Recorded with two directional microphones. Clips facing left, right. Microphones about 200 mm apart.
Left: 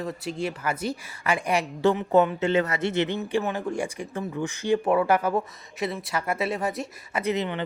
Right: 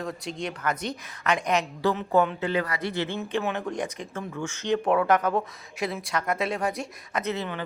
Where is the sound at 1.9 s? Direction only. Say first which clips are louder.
Left 1 dB; 20° left (ahead or behind).